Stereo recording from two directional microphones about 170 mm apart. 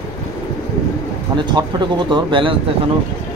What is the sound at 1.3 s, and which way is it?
Speech, 25° right (ahead or behind).